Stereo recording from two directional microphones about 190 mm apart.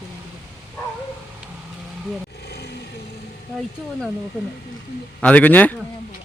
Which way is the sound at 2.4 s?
60° left (ahead or behind).